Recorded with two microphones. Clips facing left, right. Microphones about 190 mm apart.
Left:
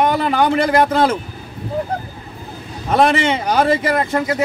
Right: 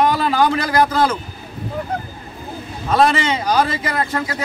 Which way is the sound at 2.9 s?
20° left (ahead or behind).